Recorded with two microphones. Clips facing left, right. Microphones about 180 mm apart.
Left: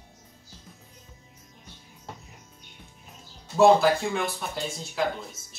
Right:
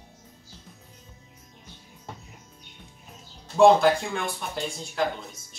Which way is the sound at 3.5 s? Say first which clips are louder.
Right 1 dB; 5° left (ahead or behind).